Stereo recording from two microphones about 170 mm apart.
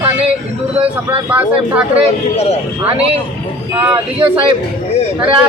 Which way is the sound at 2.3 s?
40° left (ahead or behind).